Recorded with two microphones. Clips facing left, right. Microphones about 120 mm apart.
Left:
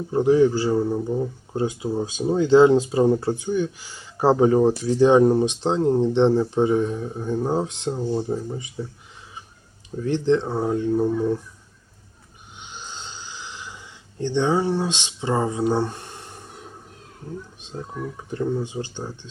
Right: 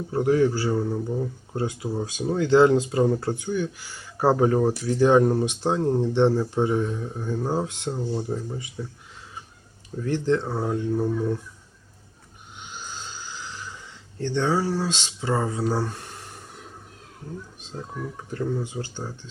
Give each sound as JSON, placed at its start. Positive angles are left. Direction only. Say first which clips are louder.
{"t": 0.1, "sound": "speech", "louder": "left 4 dB", "side_deg": 15}
{"t": 7.9, "sound": "speech", "louder": "left 4 dB", "side_deg": 5}
{"t": 10.0, "sound": "speech", "louder": "left 3 dB", "side_deg": 20}
{"t": 10.4, "sound": "speech", "louder": "left 3 dB", "side_deg": 5}
{"t": 12.5, "sound": "a sound", "louder": "even", "side_deg": 20}
{"t": 17.7, "sound": "speech", "louder": "left 2 dB", "side_deg": 5}